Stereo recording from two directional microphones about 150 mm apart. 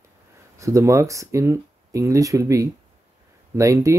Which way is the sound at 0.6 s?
20° right (ahead or behind).